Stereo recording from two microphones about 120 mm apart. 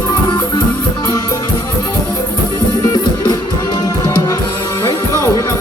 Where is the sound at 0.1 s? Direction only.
35° left (ahead or behind).